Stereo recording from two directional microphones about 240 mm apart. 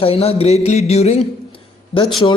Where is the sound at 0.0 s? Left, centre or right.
Left.